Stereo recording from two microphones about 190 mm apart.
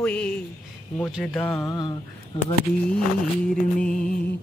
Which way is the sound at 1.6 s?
20° left (ahead or behind).